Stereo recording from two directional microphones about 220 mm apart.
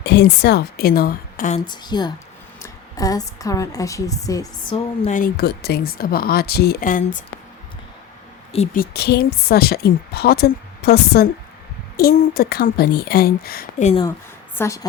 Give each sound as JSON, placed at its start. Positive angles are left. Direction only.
{"t": 0.0, "sound": "a woman's voice", "side_deg": 50}
{"t": 1.6, "sound": "a woman's voice", "side_deg": 20}
{"t": 5.1, "sound": "a woman's voice", "side_deg": 45}
{"t": 8.5, "sound": "a woman's voice", "side_deg": 35}
{"t": 14.5, "sound": "a woman's voice", "side_deg": 10}